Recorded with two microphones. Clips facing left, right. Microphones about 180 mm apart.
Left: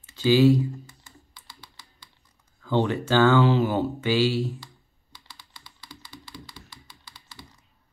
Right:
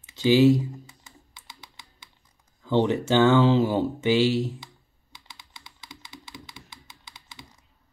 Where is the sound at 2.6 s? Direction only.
20° right (ahead or behind).